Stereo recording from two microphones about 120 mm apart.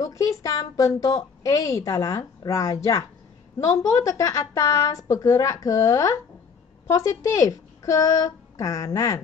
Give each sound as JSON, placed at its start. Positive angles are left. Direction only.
{"t": 0.0, "sound": "a woman's voice", "side_deg": 30}